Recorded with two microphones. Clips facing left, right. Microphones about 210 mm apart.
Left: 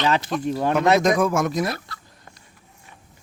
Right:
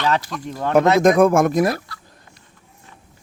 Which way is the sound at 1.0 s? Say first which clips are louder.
Right 6 dB; 55° right (ahead or behind).